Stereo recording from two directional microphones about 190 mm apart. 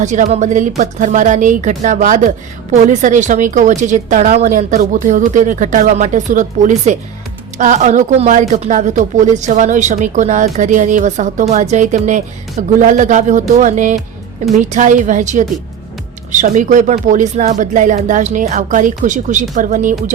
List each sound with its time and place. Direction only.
0.0 s speech: 40° right (ahead or behind)